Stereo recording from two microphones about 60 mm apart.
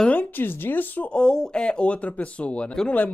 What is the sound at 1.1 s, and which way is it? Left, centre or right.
Speech, centre.